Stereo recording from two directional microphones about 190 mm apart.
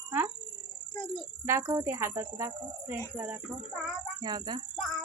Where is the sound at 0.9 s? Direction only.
25° left (ahead or behind).